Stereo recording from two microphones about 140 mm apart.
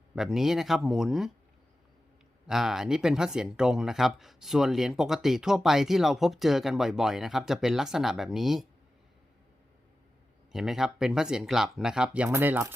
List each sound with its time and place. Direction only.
0.2 s speech: centre (ahead or behind)
2.5 s speech: 5° right (ahead or behind)
10.5 s speech: 5° right (ahead or behind)